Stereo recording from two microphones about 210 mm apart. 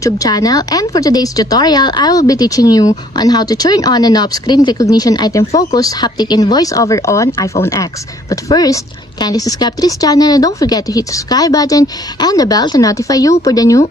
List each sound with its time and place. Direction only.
0.0 s speech: 15° left (ahead or behind)